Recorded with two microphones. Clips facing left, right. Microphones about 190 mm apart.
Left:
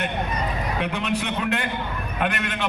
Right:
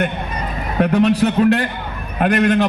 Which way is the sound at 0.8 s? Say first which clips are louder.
Right 14 dB; 40° right (ahead or behind).